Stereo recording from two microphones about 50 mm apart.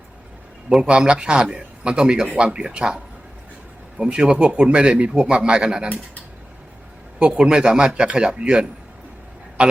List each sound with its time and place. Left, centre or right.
0.7 s speech: centre
7.2 s speech: centre